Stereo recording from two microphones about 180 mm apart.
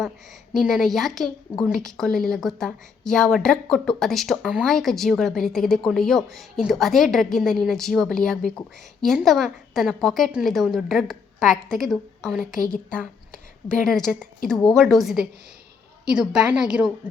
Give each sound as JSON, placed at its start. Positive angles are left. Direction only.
{"t": 0.5, "sound": "a woman's voice", "side_deg": 0}
{"t": 12.5, "sound": "speech", "side_deg": 50}
{"t": 12.9, "sound": "a woman's voice", "side_deg": 5}